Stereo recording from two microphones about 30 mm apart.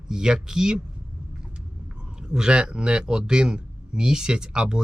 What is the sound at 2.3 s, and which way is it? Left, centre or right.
Speech, right.